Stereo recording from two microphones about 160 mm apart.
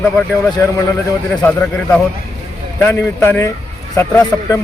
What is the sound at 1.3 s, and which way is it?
Speech, 10° left (ahead or behind).